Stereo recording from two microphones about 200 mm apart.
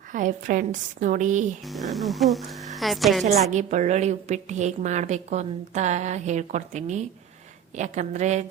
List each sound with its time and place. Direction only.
0.1 s a woman's voice: 40° right (ahead or behind)
1.6 s speech: centre (ahead or behind)
3.5 s a woman's voice: 35° right (ahead or behind)